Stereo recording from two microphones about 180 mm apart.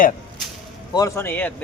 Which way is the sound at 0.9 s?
15° left (ahead or behind).